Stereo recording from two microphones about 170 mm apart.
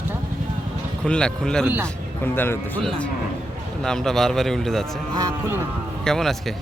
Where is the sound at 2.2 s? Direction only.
10° left (ahead or behind).